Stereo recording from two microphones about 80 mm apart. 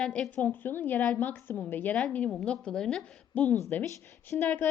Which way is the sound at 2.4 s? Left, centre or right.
Centre.